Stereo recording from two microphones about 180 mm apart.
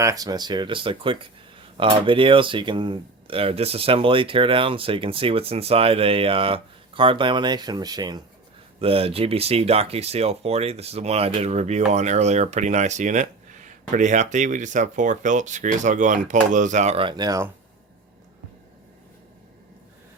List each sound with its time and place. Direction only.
0.0 s speech: 20° right (ahead or behind)